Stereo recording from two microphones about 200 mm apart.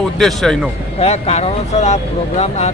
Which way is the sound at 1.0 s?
30° left (ahead or behind).